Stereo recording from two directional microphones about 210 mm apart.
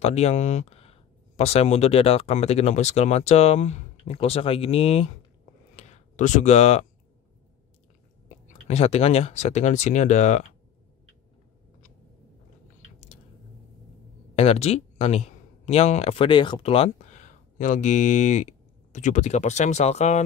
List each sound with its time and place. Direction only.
0.0 s speech: 30° left (ahead or behind)
8.5 s speech: 30° left (ahead or behind)
14.3 s speech: 30° left (ahead or behind)